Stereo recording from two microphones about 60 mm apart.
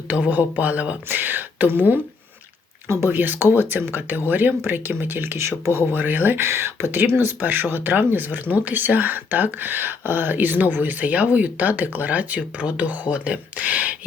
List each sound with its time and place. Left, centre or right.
0.1 s speech: right
5.9 s speech: right